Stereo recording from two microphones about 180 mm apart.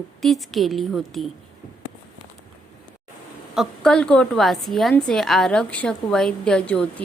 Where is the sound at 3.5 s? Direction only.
Centre (ahead or behind).